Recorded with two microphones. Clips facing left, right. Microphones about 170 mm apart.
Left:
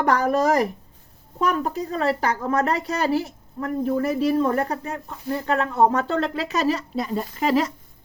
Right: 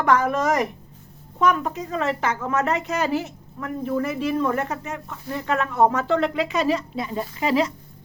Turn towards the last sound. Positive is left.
turn(degrees=45)  # may be behind; listen again after turning